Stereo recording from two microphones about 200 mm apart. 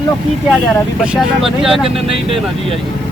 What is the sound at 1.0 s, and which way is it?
Speech, 5° right (ahead or behind).